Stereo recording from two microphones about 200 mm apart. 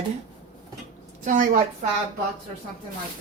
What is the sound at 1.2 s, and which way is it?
Speech, 40° right (ahead or behind).